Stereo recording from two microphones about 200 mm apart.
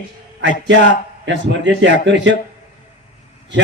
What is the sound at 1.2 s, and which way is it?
A man's voice, 65° right (ahead or behind).